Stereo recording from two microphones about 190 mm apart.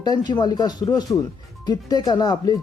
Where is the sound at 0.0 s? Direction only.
20° left (ahead or behind).